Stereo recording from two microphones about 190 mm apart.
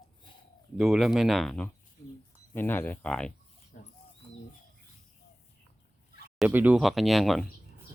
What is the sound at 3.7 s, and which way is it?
Bird, 50° left (ahead or behind).